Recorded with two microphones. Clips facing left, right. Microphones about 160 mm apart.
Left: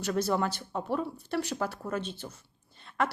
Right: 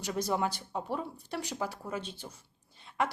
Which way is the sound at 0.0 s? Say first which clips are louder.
Left 3 dB; 15° right (ahead or behind).